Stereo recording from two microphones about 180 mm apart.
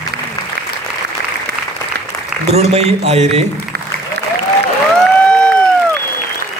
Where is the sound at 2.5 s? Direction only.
35° right (ahead or behind).